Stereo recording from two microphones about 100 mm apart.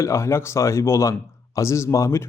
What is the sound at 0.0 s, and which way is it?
A man's voice, 30° left (ahead or behind).